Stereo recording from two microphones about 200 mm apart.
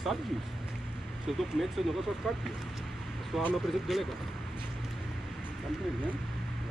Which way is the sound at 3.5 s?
Centre (ahead or behind).